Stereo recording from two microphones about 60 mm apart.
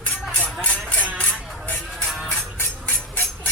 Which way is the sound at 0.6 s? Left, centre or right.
Left.